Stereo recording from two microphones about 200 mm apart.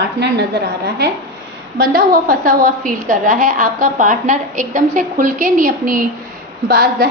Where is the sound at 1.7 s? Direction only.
45° right (ahead or behind).